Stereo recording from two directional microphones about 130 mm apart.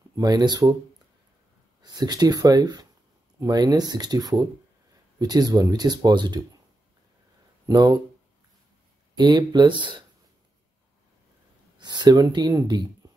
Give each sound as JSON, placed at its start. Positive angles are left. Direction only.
{"t": 0.1, "sound": "speech", "side_deg": -30}
{"t": 1.8, "sound": "speech", "side_deg": -30}
{"t": 7.6, "sound": "speech", "side_deg": -30}
{"t": 9.1, "sound": "speech", "side_deg": -35}
{"t": 11.8, "sound": "speech", "side_deg": -35}